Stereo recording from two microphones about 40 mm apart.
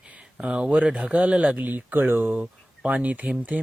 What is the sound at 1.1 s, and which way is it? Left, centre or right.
Speech, right.